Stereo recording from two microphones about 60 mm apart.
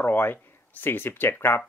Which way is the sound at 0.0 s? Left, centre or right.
Left.